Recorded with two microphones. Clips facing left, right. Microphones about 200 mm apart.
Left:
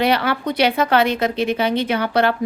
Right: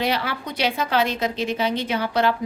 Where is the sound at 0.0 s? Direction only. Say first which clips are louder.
Left 6 dB; 60° left (ahead or behind).